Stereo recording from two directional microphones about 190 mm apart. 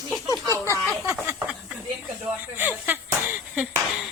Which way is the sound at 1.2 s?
5° right (ahead or behind).